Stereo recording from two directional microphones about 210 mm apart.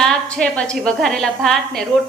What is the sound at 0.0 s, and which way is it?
A woman's voice, 5° left (ahead or behind).